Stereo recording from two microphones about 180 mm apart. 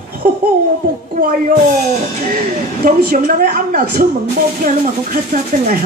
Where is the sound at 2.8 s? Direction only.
55° right (ahead or behind).